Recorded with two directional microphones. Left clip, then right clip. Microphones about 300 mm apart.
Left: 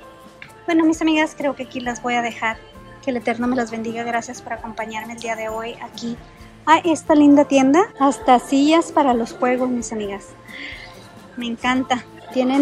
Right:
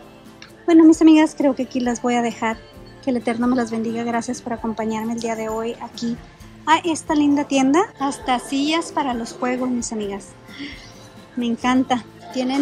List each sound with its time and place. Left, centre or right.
0.9 s a woman's voice: centre